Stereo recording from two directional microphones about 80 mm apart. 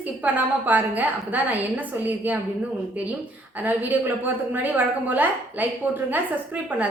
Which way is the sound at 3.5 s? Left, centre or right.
Right.